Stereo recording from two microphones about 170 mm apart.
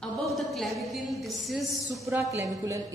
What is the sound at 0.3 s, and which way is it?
A woman's voice, centre (ahead or behind).